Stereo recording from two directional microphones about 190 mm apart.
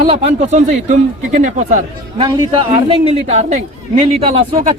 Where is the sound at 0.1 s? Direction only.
30° right (ahead or behind).